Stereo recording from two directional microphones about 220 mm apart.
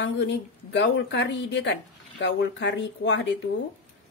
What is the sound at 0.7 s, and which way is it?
A woman's voice, 55° left (ahead or behind).